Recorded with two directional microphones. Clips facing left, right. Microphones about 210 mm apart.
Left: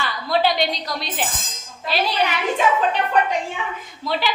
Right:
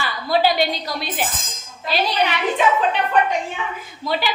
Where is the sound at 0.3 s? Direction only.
5° right (ahead or behind).